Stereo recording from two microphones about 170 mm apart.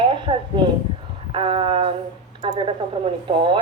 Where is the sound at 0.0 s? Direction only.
30° right (ahead or behind).